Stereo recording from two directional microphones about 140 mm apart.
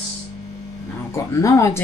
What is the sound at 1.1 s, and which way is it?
Speech, 20° left (ahead or behind).